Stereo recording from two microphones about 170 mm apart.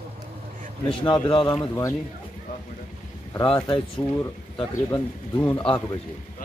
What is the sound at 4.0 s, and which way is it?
Speech, 25° left (ahead or behind).